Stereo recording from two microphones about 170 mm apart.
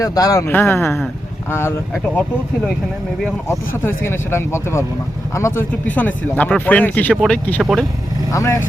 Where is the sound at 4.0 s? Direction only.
15° left (ahead or behind).